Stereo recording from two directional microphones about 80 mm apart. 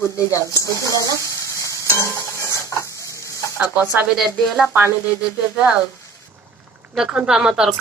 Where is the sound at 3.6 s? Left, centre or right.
Right.